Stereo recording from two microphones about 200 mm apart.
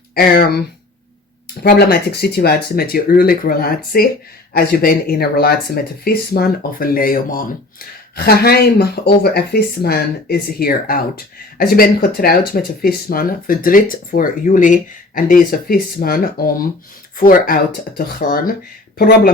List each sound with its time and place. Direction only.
0.1 s speech: 50° left (ahead or behind)
1.6 s speech: 50° left (ahead or behind)